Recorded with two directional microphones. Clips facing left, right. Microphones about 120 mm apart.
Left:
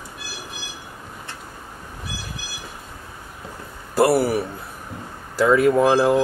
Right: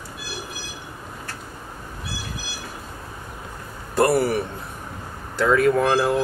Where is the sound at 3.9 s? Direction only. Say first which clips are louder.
Left 1 dB; 5° left (ahead or behind).